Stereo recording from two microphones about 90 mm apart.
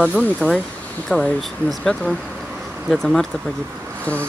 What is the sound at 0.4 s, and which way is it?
Speech, 15° left (ahead or behind).